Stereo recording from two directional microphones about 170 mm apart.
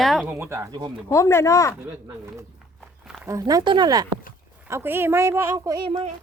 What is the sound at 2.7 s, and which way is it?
Walk, centre (ahead or behind).